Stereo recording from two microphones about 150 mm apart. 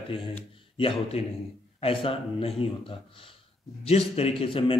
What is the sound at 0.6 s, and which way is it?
Speech, 35° left (ahead or behind).